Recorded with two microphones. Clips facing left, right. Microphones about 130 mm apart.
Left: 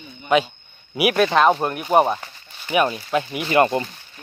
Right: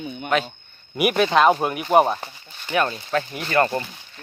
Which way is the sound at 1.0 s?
Centre (ahead or behind).